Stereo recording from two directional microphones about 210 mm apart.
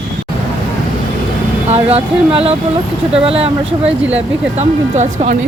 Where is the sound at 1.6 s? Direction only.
30° right (ahead or behind).